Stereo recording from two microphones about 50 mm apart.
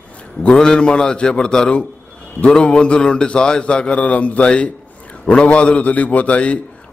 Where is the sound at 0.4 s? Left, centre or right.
Centre.